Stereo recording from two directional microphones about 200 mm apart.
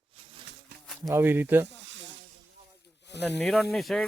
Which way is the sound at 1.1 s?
10° right (ahead or behind).